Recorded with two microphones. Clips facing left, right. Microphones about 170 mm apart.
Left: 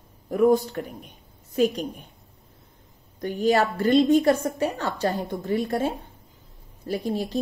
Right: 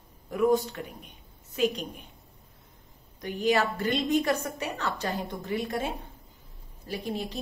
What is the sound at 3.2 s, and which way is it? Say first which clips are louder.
Speech: left 4 dB; 35° left (ahead or behind).